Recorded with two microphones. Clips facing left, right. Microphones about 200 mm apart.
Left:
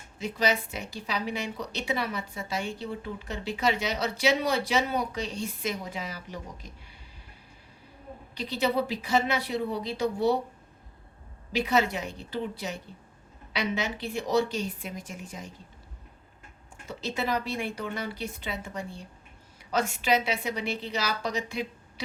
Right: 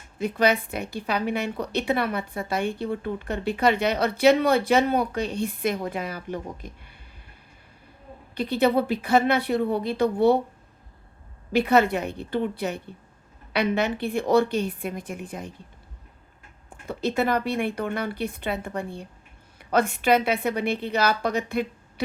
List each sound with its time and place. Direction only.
0.2 s a woman's voice: 55° right (ahead or behind)
8.4 s a woman's voice: 55° right (ahead or behind)
11.5 s a woman's voice: 55° right (ahead or behind)
16.6 s a woman's voice: 55° right (ahead or behind)